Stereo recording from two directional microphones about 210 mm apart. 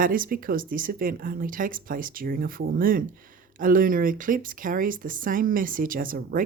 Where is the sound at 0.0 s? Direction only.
40° right (ahead or behind).